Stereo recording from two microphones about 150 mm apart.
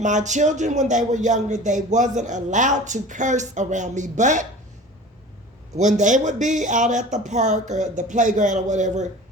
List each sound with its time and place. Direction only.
0.0 s speech: 55° right (ahead or behind)
5.7 s speech: 55° right (ahead or behind)